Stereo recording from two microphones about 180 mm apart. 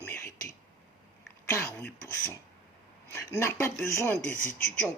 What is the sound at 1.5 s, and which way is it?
Speech, 15° left (ahead or behind).